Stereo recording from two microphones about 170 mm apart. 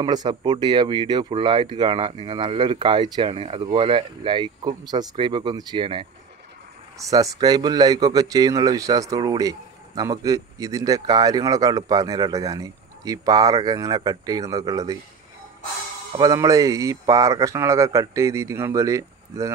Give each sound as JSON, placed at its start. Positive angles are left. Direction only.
{"t": 0.0, "sound": "speech", "side_deg": -25}
{"t": 16.2, "sound": "speech", "side_deg": -20}